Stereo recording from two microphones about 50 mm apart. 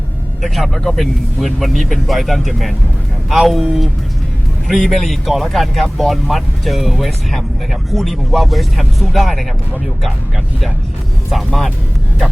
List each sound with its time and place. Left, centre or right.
0.4 s speech: centre
11.3 s speech: centre